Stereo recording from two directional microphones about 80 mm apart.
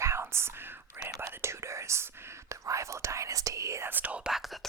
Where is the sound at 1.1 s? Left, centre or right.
Right.